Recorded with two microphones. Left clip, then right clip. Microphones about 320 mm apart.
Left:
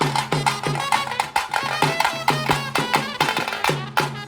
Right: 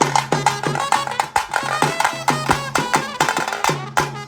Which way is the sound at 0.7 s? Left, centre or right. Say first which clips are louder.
Right 3 dB; right.